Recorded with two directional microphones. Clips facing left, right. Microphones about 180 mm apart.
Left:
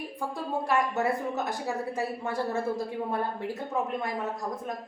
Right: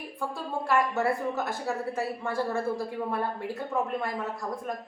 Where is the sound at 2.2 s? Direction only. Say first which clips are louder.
Right 1 dB; 20° left (ahead or behind).